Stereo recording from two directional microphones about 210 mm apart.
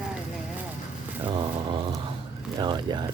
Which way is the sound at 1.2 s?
25° right (ahead or behind).